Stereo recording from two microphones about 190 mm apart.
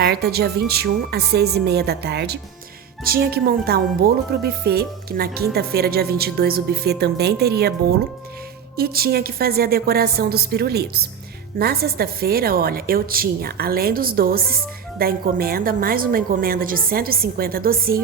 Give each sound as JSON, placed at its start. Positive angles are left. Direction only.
{"t": 0.0, "sound": "speech", "side_deg": -60}
{"t": 8.7, "sound": "a woman's voice", "side_deg": -55}